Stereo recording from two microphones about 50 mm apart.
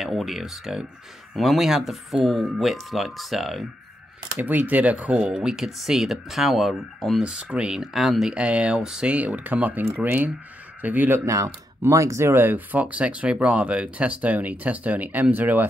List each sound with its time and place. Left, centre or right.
0.0 s speech: centre
4.4 s speech: right
5.1 s speech: centre
7.2 s speech: centre
7.8 s speech: centre
8.3 s speech: right
9.1 s speech: right
11.8 s speech: right
12.3 s speech: right